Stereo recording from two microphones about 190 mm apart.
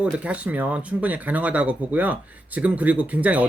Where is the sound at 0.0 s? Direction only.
5° right (ahead or behind).